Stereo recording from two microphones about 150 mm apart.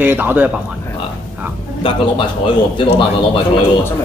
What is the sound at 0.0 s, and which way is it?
Speech, 10° right (ahead or behind).